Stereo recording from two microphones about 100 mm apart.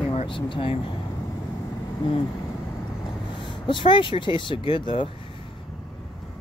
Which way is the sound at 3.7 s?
55° left (ahead or behind).